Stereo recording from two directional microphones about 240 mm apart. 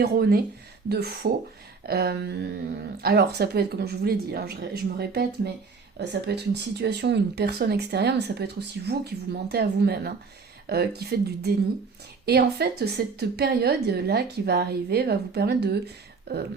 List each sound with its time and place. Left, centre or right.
0.0 s a woman's voice: right